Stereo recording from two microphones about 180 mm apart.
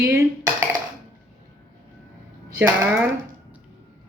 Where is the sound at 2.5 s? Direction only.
10° right (ahead or behind).